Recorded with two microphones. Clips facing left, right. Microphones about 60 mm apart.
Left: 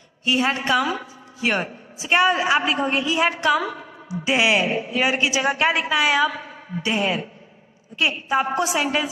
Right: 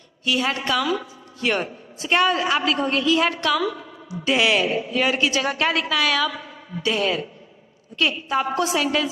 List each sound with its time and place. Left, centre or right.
0.2 s a woman's voice: left
1.4 s a woman's voice: centre; by 4.2 s left
4.2 s a woman's voice: centre
8.3 s a woman's voice: centre